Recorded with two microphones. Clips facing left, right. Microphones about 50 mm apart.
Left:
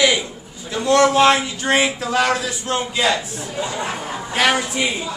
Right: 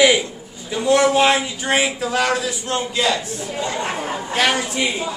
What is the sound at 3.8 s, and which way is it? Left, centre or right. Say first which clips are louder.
Chatter: right 2 dB; right.